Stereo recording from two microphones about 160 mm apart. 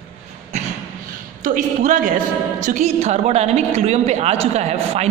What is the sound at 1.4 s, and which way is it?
A woman's voice, 55° right (ahead or behind).